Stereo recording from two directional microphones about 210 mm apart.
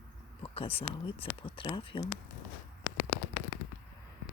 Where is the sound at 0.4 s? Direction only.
25° left (ahead or behind).